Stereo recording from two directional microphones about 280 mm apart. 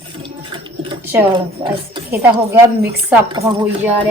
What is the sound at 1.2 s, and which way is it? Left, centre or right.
A woman's voice, centre.